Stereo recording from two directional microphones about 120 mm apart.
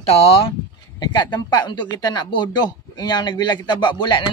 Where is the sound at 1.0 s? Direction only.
35° left (ahead or behind).